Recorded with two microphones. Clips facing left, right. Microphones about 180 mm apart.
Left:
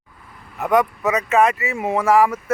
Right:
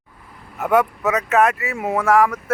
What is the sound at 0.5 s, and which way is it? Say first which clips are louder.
Speech: even; 5° right (ahead or behind).